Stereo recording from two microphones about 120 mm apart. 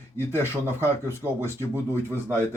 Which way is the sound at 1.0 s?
20° right (ahead or behind).